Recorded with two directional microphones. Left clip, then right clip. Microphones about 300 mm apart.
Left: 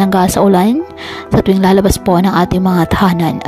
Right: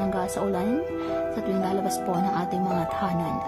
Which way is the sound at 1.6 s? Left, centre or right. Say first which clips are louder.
Left 15 dB; left.